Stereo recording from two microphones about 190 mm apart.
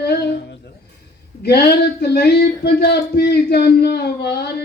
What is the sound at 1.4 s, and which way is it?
Speech, 60° left (ahead or behind).